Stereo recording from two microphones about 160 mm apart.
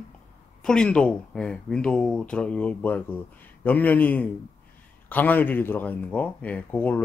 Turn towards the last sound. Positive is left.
turn(degrees=10)  # may be behind; listen again after turning